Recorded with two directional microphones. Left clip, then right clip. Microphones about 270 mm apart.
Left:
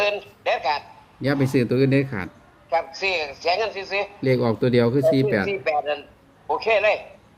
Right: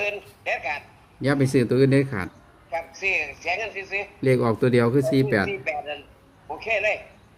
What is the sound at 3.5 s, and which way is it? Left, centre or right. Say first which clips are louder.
Speech: left 4 dB; left.